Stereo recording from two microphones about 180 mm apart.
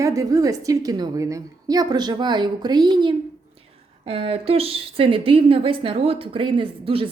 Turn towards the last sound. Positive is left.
turn(degrees=-30)  # may be behind; listen again after turning